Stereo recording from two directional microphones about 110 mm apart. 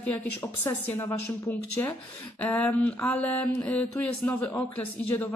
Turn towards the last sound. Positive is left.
turn(degrees=15)  # may be behind; listen again after turning